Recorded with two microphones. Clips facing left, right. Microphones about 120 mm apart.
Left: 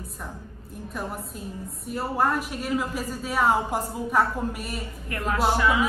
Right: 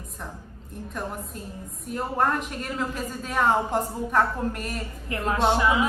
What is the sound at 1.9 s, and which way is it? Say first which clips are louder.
A woman's voice: even; 5° left (ahead or behind).